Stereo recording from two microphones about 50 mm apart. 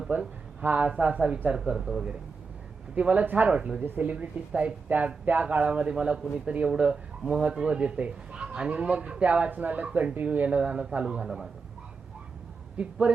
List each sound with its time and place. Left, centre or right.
0.1 s speech: right
0.6 s speech: right
1.7 s speech: centre
2.9 s speech: right
3.2 s speech: right
3.5 s speech: right
3.8 s speech: right; by 11.3 s centre
12.7 s speech: right